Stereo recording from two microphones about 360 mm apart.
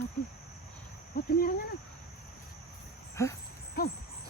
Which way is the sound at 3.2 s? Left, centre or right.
Centre.